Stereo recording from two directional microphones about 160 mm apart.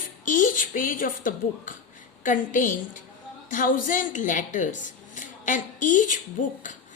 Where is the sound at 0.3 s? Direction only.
55° left (ahead or behind).